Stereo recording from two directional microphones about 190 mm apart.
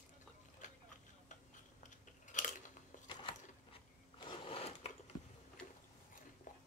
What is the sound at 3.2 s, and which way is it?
Sewing machine, 25° left (ahead or behind).